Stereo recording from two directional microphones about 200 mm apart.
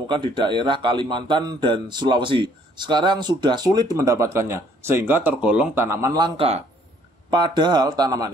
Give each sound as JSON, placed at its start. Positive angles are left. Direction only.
{"t": 0.1, "sound": "speech", "side_deg": -25}